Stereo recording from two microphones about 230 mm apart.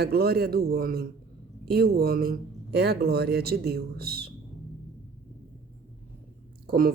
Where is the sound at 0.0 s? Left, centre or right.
Right.